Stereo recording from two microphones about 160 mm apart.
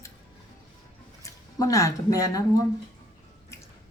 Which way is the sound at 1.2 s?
20° left (ahead or behind).